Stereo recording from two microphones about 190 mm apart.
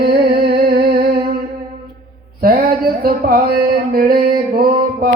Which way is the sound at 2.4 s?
50° right (ahead or behind).